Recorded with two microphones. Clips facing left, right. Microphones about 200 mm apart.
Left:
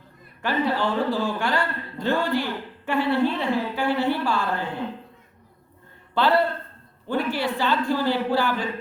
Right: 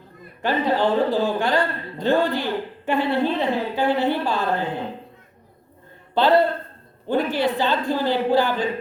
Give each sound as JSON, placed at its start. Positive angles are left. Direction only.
{"t": 0.4, "sound": "a man's voice", "side_deg": -20}
{"t": 6.1, "sound": "a man's voice", "side_deg": -20}